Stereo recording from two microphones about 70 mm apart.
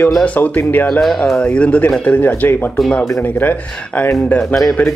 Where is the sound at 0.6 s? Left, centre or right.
Left.